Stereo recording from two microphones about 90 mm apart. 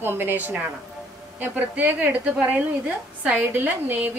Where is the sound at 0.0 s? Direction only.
25° right (ahead or behind).